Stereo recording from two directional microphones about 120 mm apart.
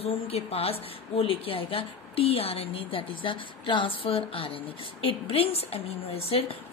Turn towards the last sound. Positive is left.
turn(degrees=55)  # may be behind; listen again after turning